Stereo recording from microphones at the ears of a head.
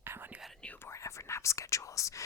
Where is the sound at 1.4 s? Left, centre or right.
Left.